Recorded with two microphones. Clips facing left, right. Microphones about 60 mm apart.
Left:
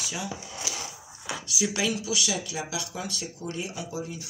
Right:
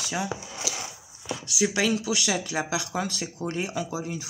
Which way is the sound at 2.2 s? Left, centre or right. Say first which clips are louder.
Right 4 dB; right.